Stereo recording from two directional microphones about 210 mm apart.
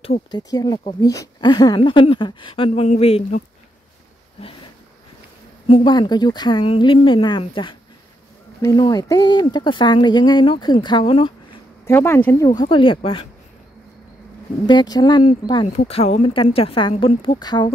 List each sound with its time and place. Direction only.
0.0 s speech: 25° left (ahead or behind)
5.7 s speech: 20° left (ahead or behind)
11.8 s speech: 10° left (ahead or behind)
12.4 s speech: 20° left (ahead or behind)
14.7 s speech: 20° left (ahead or behind)